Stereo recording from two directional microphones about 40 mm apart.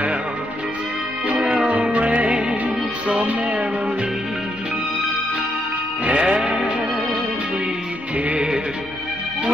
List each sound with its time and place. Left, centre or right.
1.3 s music: right
6.0 s music: right